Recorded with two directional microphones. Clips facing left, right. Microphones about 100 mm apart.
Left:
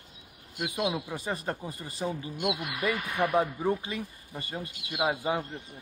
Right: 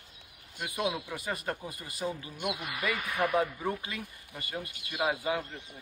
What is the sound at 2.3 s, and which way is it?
Speech, 90° left.